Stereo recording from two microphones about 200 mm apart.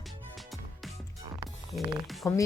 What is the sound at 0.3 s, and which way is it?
Music, centre (ahead or behind).